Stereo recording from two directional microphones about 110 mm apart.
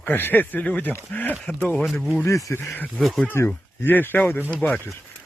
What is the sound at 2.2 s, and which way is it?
Speech, 25° left (ahead or behind).